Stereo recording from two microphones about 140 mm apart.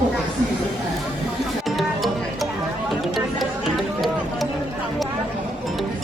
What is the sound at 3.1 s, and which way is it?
Music, centre (ahead or behind).